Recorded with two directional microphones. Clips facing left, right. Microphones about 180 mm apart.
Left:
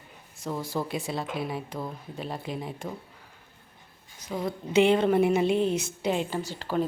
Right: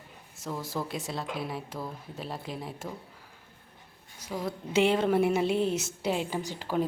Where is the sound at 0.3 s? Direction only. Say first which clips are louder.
Left 3 dB; centre (ahead or behind).